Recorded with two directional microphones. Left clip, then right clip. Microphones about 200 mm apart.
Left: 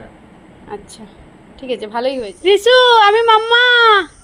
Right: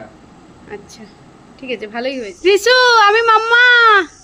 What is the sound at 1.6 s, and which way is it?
Speech, 25° right (ahead or behind).